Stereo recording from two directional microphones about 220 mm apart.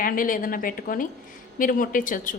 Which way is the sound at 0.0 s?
40° left (ahead or behind).